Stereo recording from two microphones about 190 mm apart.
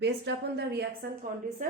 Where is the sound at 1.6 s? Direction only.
45° right (ahead or behind).